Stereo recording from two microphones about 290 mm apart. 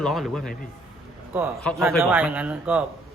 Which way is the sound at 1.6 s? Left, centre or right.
Centre.